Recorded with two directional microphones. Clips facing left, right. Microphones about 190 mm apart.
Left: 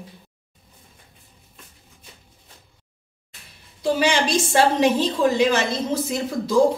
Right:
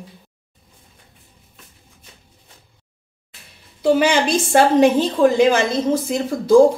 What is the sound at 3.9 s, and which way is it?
A woman's voice, 55° right (ahead or behind).